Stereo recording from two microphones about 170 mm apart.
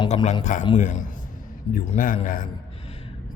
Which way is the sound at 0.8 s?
45° left (ahead or behind).